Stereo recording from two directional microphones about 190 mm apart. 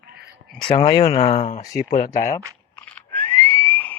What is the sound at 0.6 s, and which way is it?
Speech, 30° left (ahead or behind).